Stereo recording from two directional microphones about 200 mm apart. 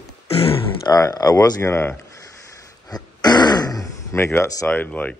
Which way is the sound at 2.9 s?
20° left (ahead or behind).